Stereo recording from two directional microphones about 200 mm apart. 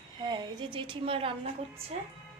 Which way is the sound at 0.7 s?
25° right (ahead or behind).